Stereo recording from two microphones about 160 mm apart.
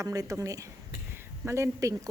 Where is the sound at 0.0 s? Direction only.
20° right (ahead or behind).